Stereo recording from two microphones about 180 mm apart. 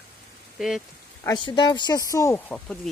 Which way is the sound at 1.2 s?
25° left (ahead or behind).